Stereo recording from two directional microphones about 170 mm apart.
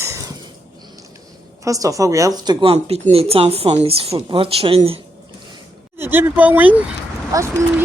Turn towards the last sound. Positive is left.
turn(degrees=-20)  # may be behind; listen again after turning